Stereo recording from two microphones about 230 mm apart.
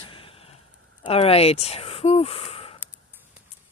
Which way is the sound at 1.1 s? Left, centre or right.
Left.